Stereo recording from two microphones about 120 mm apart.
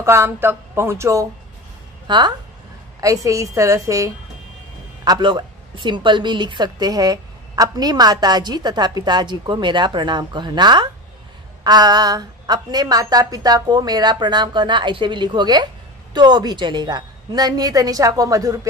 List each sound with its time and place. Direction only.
0.0 s speech: 20° right (ahead or behind)
2.0 s speech: 40° right (ahead or behind)
3.0 s speech: 25° right (ahead or behind)
5.0 s a woman's voice: 40° right (ahead or behind)